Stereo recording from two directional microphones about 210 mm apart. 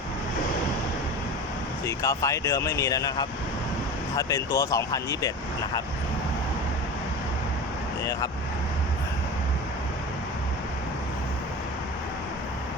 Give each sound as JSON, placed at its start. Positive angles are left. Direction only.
{"t": 1.9, "sound": "speech", "side_deg": 15}